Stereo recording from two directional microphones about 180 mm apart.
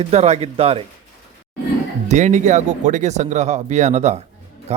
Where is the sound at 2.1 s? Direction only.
40° right (ahead or behind).